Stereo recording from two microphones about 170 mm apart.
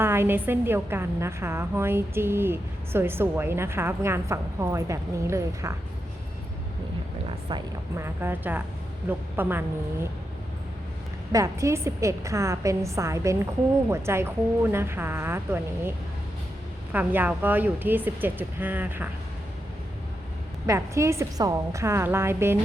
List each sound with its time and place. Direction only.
0.0 s a woman's voice: 15° right (ahead or behind)
7.9 s a woman's voice: 15° right (ahead or behind)
11.3 s a woman's voice: 20° right (ahead or behind)
16.9 s a woman's voice: 10° right (ahead or behind)
20.7 s a woman's voice: 15° right (ahead or behind)